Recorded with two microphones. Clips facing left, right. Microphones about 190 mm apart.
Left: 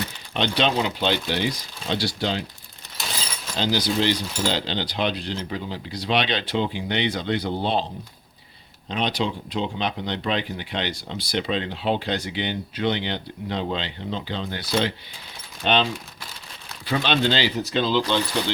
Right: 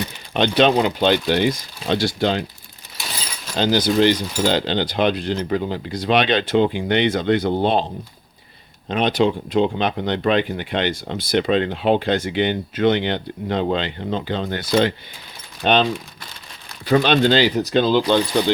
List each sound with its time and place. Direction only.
0.3 s speech: 50° right (ahead or behind)
3.6 s speech: 50° right (ahead or behind)
8.9 s speech: 50° right (ahead or behind)